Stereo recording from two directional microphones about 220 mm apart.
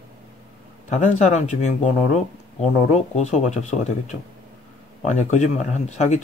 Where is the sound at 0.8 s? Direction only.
30° left (ahead or behind).